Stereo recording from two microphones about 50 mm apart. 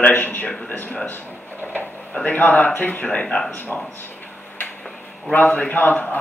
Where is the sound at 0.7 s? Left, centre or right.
Left.